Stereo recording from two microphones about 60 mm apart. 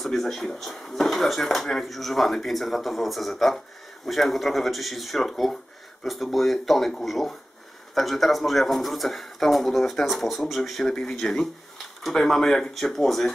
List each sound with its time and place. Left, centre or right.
0.0 s speech: centre